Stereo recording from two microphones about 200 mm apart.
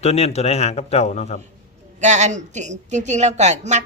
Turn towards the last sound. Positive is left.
turn(degrees=-35)  # may be behind; listen again after turning